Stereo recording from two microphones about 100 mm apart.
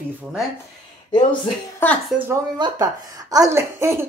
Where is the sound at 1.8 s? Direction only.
20° left (ahead or behind).